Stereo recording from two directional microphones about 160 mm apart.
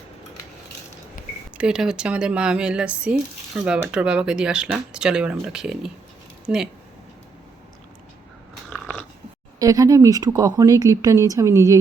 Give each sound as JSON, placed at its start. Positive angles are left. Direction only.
{"t": 1.5, "sound": "speech", "side_deg": -5}
{"t": 9.6, "sound": "speech", "side_deg": -20}